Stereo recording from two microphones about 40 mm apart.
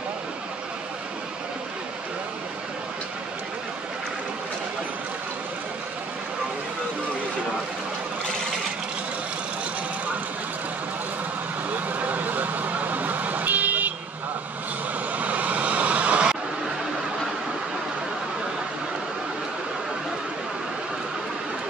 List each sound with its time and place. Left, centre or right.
11.7 s vehicle: right
15.1 s vehicle: right